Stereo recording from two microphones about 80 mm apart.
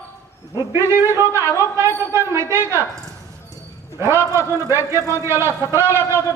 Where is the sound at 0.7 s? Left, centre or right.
Right.